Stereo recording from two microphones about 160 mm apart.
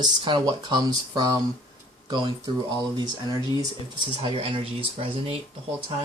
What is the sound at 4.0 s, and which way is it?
Speech, 35° right (ahead or behind).